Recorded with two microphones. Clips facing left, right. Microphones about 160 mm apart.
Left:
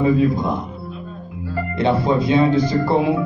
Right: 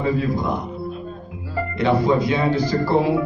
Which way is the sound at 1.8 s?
25° left (ahead or behind).